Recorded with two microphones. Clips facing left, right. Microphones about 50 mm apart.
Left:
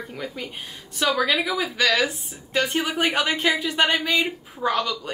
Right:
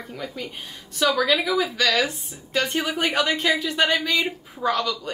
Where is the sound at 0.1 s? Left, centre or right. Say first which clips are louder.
Even; centre.